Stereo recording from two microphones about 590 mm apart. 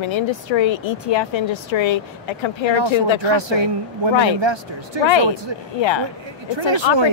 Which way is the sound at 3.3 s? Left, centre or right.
Right.